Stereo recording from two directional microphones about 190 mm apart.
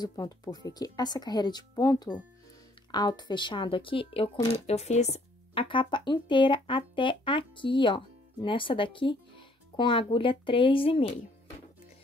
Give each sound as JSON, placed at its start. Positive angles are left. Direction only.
{"t": 0.0, "sound": "speech", "side_deg": 20}